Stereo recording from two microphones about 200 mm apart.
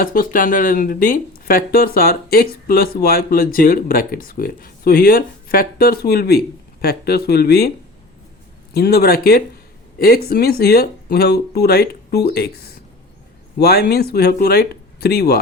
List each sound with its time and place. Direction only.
0.0 s speech: 45° left (ahead or behind)
8.7 s speech: 50° left (ahead or behind)